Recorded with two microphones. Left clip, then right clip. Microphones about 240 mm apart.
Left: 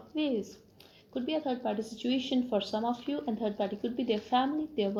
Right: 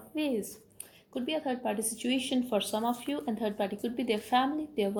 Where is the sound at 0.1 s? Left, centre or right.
Right.